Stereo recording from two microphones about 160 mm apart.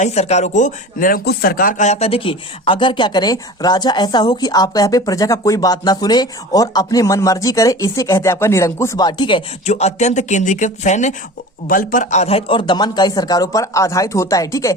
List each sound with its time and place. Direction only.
0.0 s speech: 40° left (ahead or behind)
9.6 s speech: 45° left (ahead or behind)
11.7 s speech: 60° left (ahead or behind); by 14.8 s 20° left (ahead or behind)